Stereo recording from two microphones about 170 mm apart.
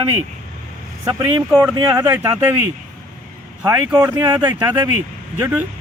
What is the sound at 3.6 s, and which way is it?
Speech, 15° right (ahead or behind).